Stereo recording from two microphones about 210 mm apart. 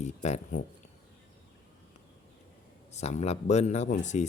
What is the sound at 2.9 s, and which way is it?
Speech, 30° left (ahead or behind).